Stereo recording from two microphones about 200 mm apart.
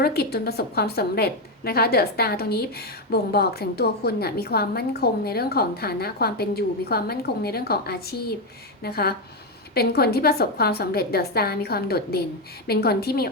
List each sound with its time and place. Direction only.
0.0 s a woman's voice: 50° left (ahead or behind)